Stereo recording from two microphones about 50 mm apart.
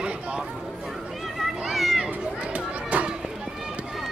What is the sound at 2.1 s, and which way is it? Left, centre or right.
Children playing, right.